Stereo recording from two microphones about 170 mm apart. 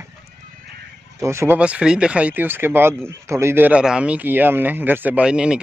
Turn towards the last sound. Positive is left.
turn(degrees=-5)  # may be behind; listen again after turning